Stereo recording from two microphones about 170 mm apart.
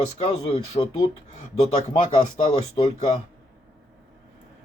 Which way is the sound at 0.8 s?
30° left (ahead or behind).